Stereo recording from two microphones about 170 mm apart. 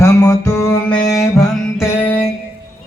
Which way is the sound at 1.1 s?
Centre (ahead or behind).